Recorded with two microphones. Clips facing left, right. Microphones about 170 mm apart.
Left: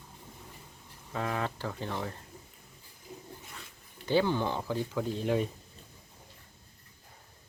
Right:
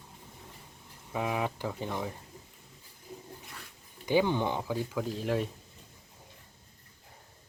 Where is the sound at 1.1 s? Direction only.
10° right (ahead or behind).